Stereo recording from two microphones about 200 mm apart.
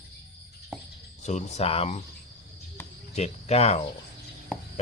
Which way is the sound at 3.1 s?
30° left (ahead or behind).